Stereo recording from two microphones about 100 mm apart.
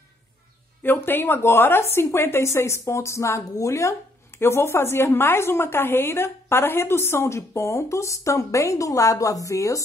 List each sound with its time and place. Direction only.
0.8 s a woman's voice: 20° left (ahead or behind)